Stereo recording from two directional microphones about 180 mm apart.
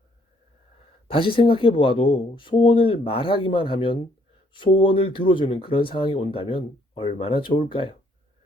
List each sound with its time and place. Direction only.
1.0 s speech: 30° left (ahead or behind)